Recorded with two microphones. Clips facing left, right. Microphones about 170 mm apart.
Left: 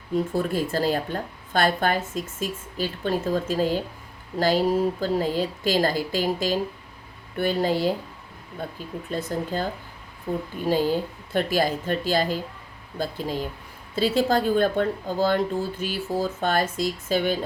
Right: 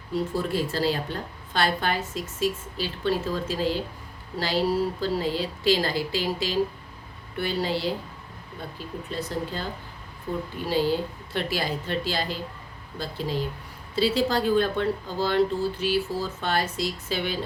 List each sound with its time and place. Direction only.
0.1 s a woman's voice: 50° left (ahead or behind)
9.0 s a woman's voice: 50° left (ahead or behind)